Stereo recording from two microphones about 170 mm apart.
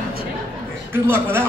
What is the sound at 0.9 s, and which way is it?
Speech, 15° right (ahead or behind).